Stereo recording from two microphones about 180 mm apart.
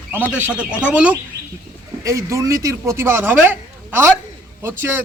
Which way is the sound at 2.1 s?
15° right (ahead or behind).